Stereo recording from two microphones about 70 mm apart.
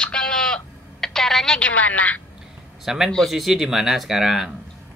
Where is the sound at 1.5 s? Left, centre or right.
Centre.